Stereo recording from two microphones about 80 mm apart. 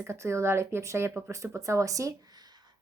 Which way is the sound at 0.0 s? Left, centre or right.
Right.